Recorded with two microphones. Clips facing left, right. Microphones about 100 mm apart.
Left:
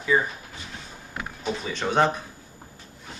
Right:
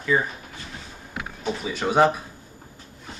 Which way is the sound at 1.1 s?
10° right (ahead or behind).